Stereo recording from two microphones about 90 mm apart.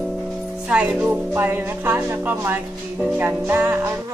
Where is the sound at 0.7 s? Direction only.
15° right (ahead or behind).